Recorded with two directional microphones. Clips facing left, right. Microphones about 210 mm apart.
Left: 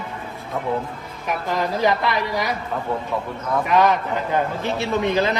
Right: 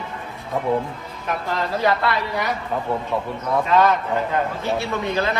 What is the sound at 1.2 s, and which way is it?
A man's voice, 15° left (ahead or behind).